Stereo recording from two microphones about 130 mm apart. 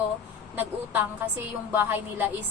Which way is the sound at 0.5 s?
15° right (ahead or behind).